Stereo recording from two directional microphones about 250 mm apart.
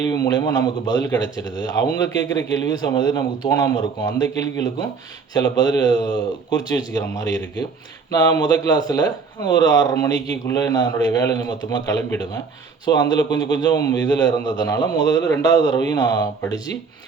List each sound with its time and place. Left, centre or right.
0.1 s a man's voice: centre
2.5 s a man's voice: centre